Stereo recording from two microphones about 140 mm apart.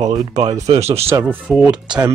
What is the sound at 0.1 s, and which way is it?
Speech, 35° right (ahead or behind).